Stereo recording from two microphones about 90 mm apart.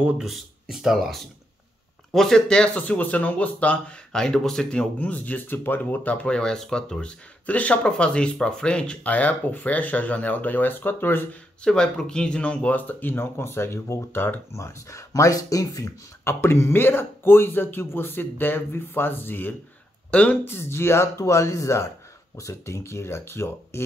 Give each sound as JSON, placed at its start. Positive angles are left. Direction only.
{"t": 0.0, "sound": "speech", "side_deg": -5}
{"t": 11.6, "sound": "speech", "side_deg": 10}
{"t": 20.4, "sound": "speech", "side_deg": 25}